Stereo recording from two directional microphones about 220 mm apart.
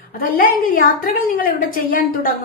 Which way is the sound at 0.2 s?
40° left (ahead or behind).